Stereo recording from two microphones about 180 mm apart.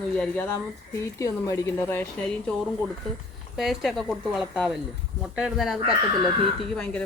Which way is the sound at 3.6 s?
Centre (ahead or behind).